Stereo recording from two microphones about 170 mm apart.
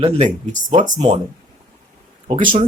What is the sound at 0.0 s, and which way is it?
Speech, 45° right (ahead or behind).